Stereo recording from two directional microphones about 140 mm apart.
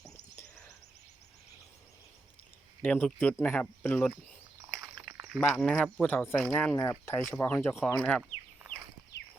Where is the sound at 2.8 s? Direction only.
10° left (ahead or behind).